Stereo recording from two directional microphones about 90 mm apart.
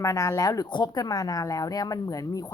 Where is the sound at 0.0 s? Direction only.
35° left (ahead or behind).